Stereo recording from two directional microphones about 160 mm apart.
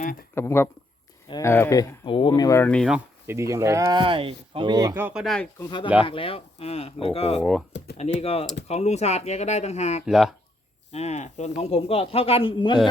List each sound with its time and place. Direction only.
0.0 s speech: 60° left (ahead or behind)
0.3 s speech: 15° left (ahead or behind)
2.0 s speech: 30° left (ahead or behind)
2.6 s speech: 5° left (ahead or behind)
3.2 s speech: 20° right (ahead or behind)
4.9 s speech: 10° right (ahead or behind)
5.2 s speech: centre (ahead or behind)
5.5 s speech: 30° left (ahead or behind)
7.7 s typing: 90° left
8.2 s speech: 40° left (ahead or behind)
10.1 s speech: centre (ahead or behind)
10.9 s speech: 45° left (ahead or behind)